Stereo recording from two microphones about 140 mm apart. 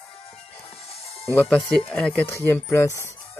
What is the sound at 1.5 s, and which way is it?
Speech, centre (ahead or behind).